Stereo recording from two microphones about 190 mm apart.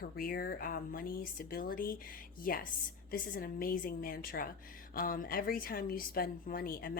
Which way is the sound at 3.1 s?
50° left (ahead or behind).